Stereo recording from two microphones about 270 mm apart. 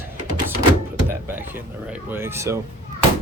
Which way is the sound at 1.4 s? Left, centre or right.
Centre.